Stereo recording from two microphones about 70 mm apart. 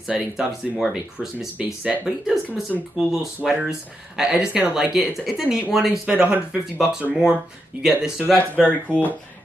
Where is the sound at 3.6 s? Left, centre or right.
Centre.